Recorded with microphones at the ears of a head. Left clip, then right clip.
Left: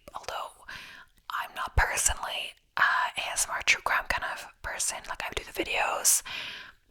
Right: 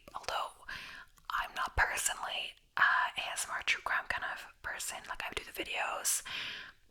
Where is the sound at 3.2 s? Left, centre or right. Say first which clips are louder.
Left 8 dB; left.